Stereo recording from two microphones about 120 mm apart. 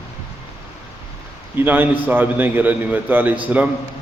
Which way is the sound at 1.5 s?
15° right (ahead or behind).